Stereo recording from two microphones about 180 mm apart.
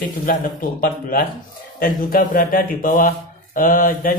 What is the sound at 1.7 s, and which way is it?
Speech, 50° left (ahead or behind).